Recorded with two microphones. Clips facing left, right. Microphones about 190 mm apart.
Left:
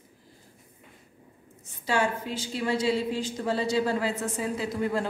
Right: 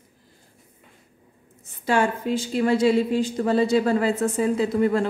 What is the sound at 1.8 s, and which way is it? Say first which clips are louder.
A woman's voice: right 5 dB; 55° right (ahead or behind).